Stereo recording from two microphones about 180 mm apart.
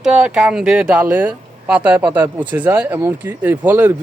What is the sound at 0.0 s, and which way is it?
Speech, 5° right (ahead or behind).